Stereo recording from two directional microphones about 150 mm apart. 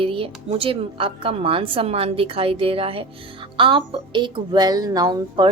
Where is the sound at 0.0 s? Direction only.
35° right (ahead or behind).